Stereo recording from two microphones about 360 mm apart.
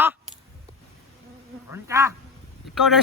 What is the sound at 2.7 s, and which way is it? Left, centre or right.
Speech, centre.